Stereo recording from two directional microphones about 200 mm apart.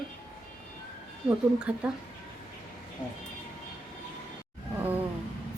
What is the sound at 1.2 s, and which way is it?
Speech, 5° right (ahead or behind).